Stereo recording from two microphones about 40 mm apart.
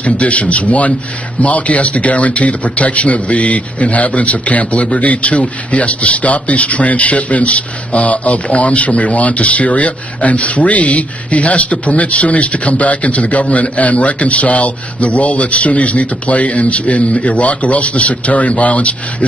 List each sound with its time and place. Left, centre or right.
0.0 s a man's voice: left